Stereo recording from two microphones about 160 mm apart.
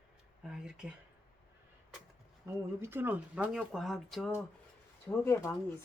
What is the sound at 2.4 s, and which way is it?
Speech, 15° right (ahead or behind).